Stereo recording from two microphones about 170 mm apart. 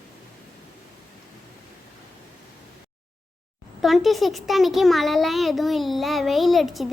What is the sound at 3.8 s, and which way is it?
A child's voice, centre (ahead or behind).